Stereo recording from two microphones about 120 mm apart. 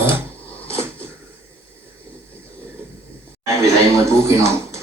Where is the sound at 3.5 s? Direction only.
25° right (ahead or behind).